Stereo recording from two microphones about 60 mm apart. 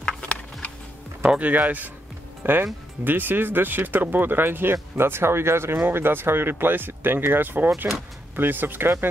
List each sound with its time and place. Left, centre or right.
0.0 s a sound: centre
1.2 s speech: centre
2.4 s speech: right